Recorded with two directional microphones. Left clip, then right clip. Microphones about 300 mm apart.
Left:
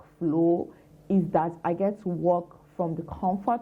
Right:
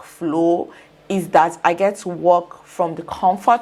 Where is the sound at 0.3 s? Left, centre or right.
Right.